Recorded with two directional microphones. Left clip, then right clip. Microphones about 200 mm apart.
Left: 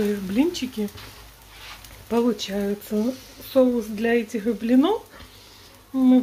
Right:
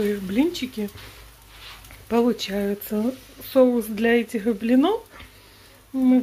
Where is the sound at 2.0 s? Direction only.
10° right (ahead or behind).